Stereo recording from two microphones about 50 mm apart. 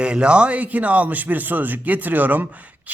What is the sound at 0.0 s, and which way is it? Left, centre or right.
Speech, right.